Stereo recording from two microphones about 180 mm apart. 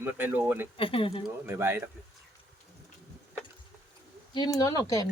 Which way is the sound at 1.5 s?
15° right (ahead or behind).